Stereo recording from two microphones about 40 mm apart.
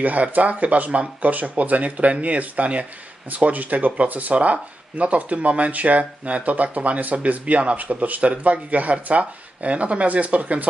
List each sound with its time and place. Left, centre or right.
0.0 s speech: right